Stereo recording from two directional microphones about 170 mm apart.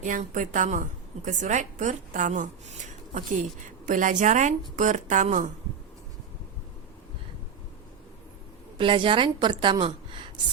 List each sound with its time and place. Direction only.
0.0 s a woman's voice: 45° right (ahead or behind)
8.8 s a woman's voice: 30° right (ahead or behind)